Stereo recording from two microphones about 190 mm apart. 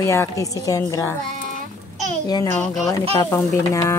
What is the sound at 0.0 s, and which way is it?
Speech, 15° left (ahead or behind).